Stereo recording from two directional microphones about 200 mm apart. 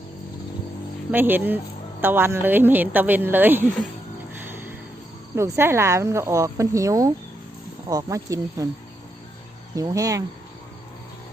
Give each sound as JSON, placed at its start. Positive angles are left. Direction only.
{"t": 1.1, "sound": "speech", "side_deg": -10}
{"t": 4.4, "sound": "music", "side_deg": -10}
{"t": 5.3, "sound": "speech", "side_deg": -15}
{"t": 9.7, "sound": "speech", "side_deg": -15}